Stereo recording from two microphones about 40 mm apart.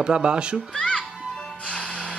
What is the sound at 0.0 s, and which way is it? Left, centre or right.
Speech, right.